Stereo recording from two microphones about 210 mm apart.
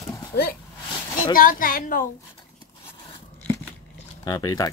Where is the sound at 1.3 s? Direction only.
40° left (ahead or behind).